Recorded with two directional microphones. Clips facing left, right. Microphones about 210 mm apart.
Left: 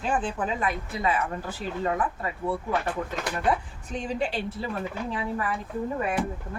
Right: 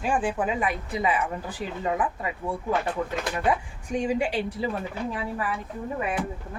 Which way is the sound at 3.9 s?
10° right (ahead or behind).